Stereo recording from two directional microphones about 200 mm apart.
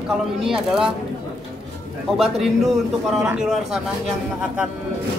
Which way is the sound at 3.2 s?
5° right (ahead or behind).